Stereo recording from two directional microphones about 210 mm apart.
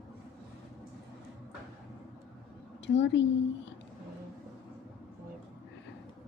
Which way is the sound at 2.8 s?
60° left (ahead or behind).